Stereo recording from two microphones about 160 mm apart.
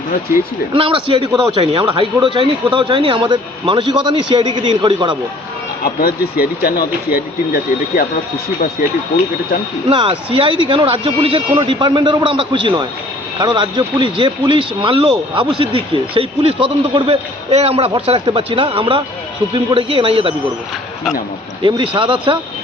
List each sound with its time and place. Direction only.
0.7 s a man's voice: 35° right (ahead or behind)
5.8 s speech: 70° left (ahead or behind)
9.9 s a man's voice: 30° right (ahead or behind)
21.6 s a man's voice: 30° right (ahead or behind)